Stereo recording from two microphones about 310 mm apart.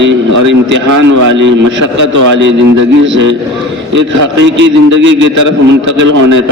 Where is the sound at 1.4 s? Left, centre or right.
Right.